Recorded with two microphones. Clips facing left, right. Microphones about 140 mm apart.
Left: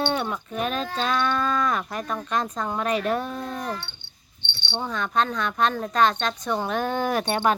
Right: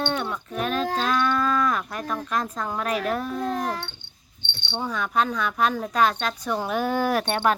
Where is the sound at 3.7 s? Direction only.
50° right (ahead or behind).